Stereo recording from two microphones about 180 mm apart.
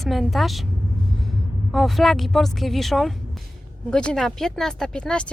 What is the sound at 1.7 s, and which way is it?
Speech, centre (ahead or behind).